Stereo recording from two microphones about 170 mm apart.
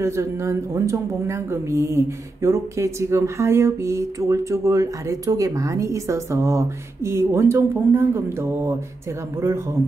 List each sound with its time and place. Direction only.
0.0 s speech: 15° right (ahead or behind)